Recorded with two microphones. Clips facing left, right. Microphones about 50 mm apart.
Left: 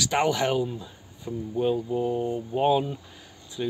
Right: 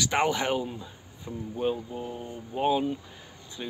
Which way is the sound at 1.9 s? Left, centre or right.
Centre.